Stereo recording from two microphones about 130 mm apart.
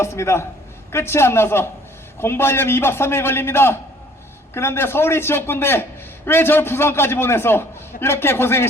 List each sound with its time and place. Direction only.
0.0 s a man's voice: 20° left (ahead or behind)